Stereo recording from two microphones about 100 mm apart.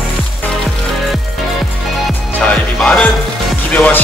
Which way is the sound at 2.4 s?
5° left (ahead or behind).